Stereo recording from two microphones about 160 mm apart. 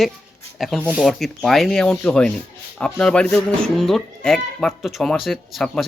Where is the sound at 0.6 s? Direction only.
Centre (ahead or behind).